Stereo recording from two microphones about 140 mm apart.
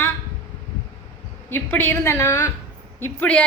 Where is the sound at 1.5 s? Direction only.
15° left (ahead or behind).